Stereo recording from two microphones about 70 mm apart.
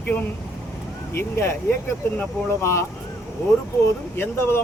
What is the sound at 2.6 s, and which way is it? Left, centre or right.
Speech, left.